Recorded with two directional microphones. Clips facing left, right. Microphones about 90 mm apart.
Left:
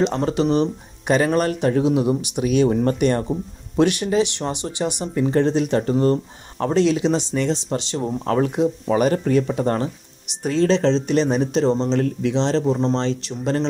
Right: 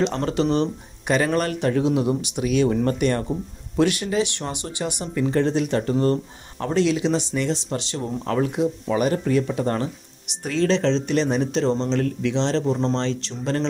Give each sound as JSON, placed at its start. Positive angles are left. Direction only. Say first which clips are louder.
{"t": 0.0, "sound": "speech", "louder": "left 2 dB", "side_deg": 15}
{"t": 2.4, "sound": "speech", "louder": "left 2 dB", "side_deg": 25}
{"t": 8.3, "sound": "speech", "louder": "left 3 dB", "side_deg": 40}
{"t": 9.5, "sound": "speech", "louder": "left 2 dB", "side_deg": 30}
{"t": 12.0, "sound": "speech", "louder": "left 2 dB", "side_deg": 30}
{"t": 12.4, "sound": "speech", "louder": "left 3 dB", "side_deg": 15}